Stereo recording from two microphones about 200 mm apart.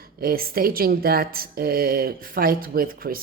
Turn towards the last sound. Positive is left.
turn(degrees=-45)  # may be behind; listen again after turning